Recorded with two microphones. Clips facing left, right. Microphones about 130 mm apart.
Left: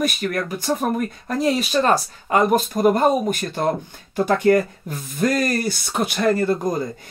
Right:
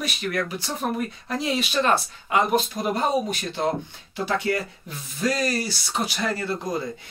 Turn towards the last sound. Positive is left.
turn(degrees=50)  # may be behind; listen again after turning